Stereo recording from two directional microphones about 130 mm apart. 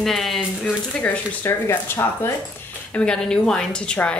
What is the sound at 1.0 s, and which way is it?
A woman's voice, 15° left (ahead or behind).